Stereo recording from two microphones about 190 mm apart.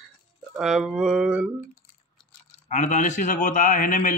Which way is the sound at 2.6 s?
40° left (ahead or behind).